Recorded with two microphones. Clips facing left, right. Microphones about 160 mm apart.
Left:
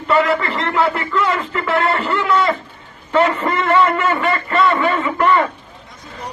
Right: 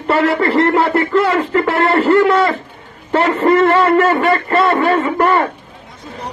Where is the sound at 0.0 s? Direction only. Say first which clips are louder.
Right 2 dB; 40° right (ahead or behind).